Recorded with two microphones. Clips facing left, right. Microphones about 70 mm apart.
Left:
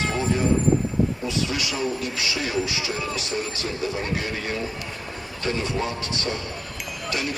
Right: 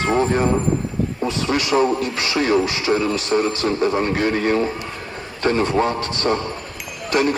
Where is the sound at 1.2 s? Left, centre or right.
Right.